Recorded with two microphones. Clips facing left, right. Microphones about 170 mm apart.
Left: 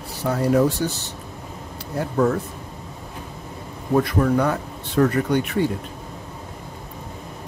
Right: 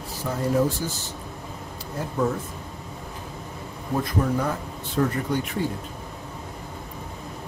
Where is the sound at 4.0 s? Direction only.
70° left (ahead or behind).